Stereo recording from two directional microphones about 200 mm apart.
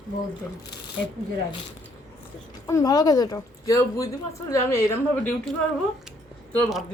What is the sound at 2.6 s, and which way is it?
Speech, 15° left (ahead or behind).